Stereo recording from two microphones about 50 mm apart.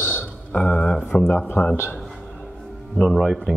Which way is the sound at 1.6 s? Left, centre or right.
Left.